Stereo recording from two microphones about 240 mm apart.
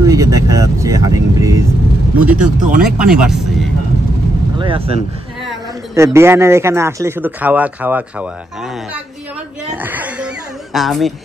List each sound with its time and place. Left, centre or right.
0.0 s vehicle: centre
2.1 s speech: centre
4.6 s speech: right
5.9 s speech: centre
9.8 s speech: centre